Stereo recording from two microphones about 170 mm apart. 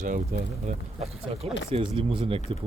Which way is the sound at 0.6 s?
35° right (ahead or behind).